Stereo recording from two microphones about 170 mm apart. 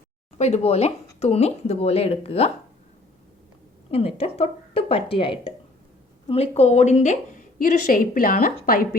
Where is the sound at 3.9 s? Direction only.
35° left (ahead or behind); by 8.8 s 60° left (ahead or behind).